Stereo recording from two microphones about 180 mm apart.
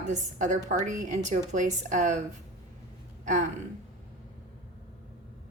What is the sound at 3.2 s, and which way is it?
Gasp, 45° right (ahead or behind).